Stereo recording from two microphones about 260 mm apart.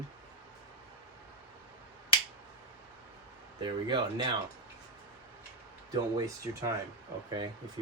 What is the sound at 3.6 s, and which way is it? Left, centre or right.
Speech, centre.